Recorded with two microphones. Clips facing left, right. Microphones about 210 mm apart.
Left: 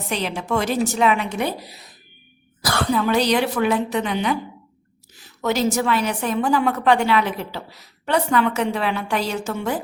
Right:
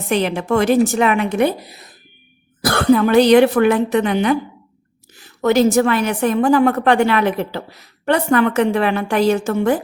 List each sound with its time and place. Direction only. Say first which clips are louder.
0.1 s a woman's voice: right 7 dB; 55° right (ahead or behind)